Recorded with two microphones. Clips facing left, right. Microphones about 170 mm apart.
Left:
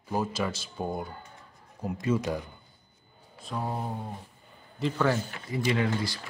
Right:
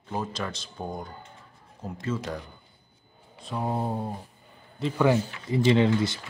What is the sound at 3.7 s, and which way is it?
Speech, 30° right (ahead or behind).